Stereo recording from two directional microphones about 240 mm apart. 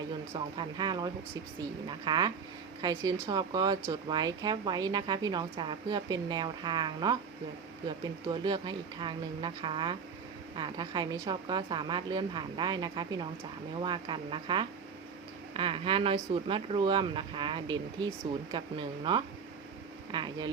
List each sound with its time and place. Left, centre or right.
0.3 s speech: centre